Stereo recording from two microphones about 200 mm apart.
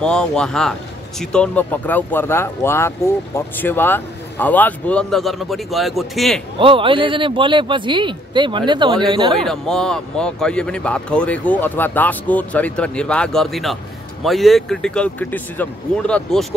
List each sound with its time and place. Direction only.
0.0 s speech: 5° left (ahead or behind)
6.6 s speech: 25° right (ahead or behind)
9.5 s speech: 5° left (ahead or behind)